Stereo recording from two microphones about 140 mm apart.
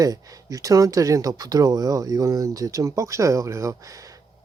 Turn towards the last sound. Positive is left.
turn(degrees=-25)  # may be behind; listen again after turning